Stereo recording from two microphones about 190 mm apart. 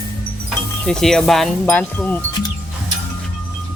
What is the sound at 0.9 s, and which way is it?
Speech, 5° left (ahead or behind).